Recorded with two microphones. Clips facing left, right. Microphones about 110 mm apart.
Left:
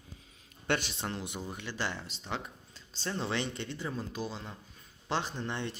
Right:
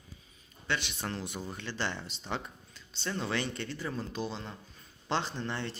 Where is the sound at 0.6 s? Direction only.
50° left (ahead or behind).